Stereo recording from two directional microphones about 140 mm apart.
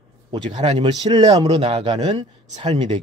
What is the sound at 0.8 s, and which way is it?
Speech, 30° right (ahead or behind).